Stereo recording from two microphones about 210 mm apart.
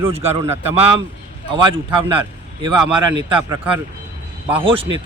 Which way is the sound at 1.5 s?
25° right (ahead or behind).